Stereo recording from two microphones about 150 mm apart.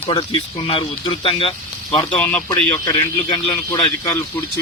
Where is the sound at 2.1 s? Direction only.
5° left (ahead or behind).